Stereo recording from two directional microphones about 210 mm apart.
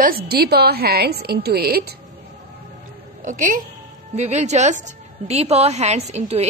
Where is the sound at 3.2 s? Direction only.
40° right (ahead or behind).